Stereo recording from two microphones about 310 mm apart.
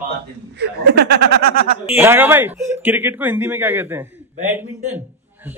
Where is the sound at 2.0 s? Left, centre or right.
Centre.